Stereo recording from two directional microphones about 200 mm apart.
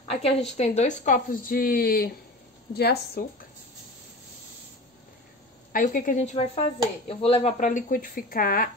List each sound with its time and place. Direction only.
0.2 s speech: 30° left (ahead or behind); by 3.3 s 55° left (ahead or behind)
5.7 s a woman's voice: 45° left (ahead or behind)